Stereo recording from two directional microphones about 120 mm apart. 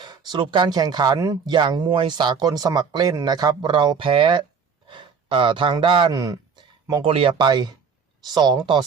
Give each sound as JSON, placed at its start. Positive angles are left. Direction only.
{"t": 0.0, "sound": "a sound", "side_deg": -35}
{"t": 0.4, "sound": "speech", "side_deg": -40}
{"t": 6.1, "sound": "speech", "side_deg": -30}
{"t": 7.0, "sound": "speech", "side_deg": -50}